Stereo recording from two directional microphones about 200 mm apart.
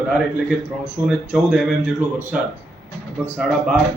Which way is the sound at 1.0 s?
10° right (ahead or behind).